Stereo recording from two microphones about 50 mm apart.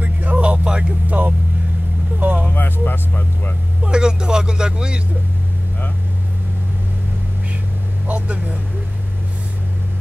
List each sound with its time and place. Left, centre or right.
0.0 s a sound: right
1.0 s speech: right
2.1 s vehicle: right
2.5 s speech: left
3.8 s speech: centre
8.1 s speech: right